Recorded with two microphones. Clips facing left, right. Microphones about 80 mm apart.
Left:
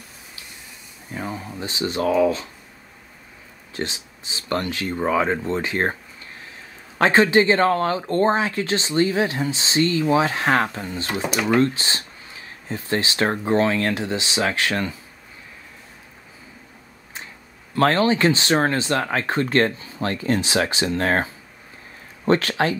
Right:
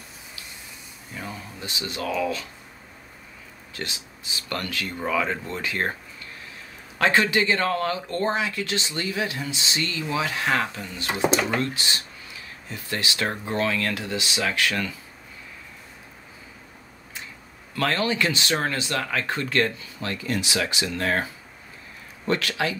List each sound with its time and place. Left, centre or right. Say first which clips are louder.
1.1 s speech: left 6 dB; left
3.7 s speech: left 6 dB; left
7.0 s speech: left 5 dB; left
11.1 s speech: right 3 dB; right
11.6 s speech: left 6 dB; left
17.7 s speech: left 6 dB; left